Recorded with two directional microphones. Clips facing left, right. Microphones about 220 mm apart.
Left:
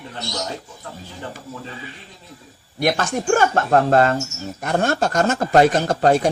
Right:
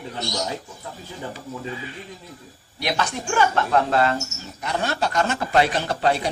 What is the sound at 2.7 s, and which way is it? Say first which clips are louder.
Speech: left 5 dB; 50° left (ahead or behind).